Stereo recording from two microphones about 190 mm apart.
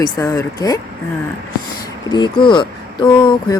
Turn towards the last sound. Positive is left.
turn(degrees=25)  # may be behind; listen again after turning